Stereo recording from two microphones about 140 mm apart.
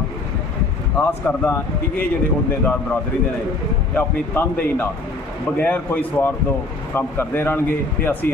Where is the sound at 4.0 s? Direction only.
10° left (ahead or behind).